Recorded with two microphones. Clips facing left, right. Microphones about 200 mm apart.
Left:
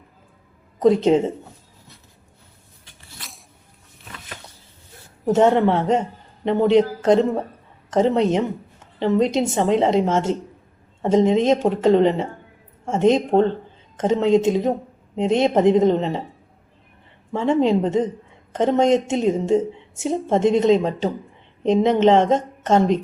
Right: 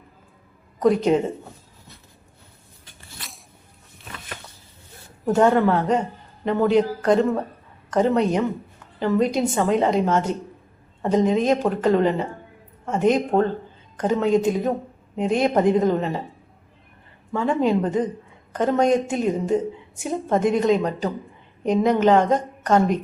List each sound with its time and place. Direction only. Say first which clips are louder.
0.8 s a woman's voice: left 3 dB; 25° left (ahead or behind)
5.2 s a woman's voice: left 1 dB; 20° left (ahead or behind)
17.3 s a woman's voice: left 2 dB; 25° left (ahead or behind)